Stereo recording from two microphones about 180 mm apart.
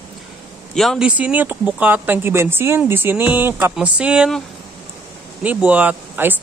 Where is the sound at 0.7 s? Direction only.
Centre (ahead or behind).